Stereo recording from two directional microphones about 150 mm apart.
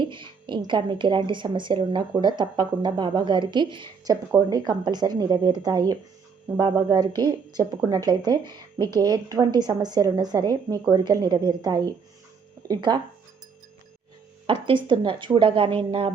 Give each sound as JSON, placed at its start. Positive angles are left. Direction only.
{"t": 0.0, "sound": "speech", "side_deg": -35}
{"t": 14.4, "sound": "speech", "side_deg": -35}